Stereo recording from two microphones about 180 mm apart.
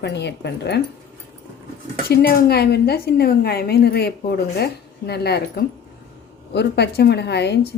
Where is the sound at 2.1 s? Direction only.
60° left (ahead or behind).